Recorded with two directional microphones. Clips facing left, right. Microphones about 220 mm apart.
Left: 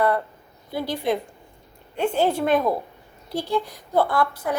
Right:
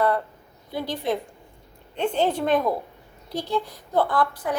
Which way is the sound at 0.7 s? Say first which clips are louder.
Left 2 dB; 10° left (ahead or behind).